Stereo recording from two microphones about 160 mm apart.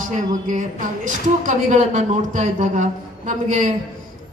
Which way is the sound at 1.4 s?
50° right (ahead or behind).